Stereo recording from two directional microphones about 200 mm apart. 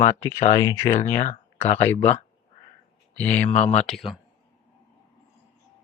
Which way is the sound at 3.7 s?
Centre (ahead or behind).